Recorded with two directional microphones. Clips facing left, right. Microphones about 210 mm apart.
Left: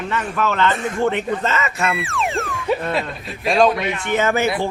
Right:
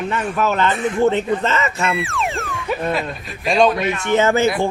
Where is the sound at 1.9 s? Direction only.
Centre (ahead or behind).